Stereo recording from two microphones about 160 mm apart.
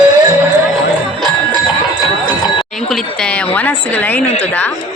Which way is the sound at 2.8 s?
5° left (ahead or behind).